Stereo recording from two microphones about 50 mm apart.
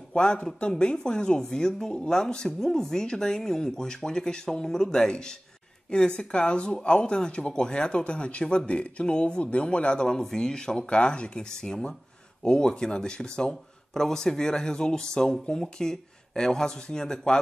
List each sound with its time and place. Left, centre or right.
0.1 s speech: centre